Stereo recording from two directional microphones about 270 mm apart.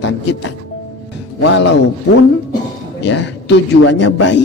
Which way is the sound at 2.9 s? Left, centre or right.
Left.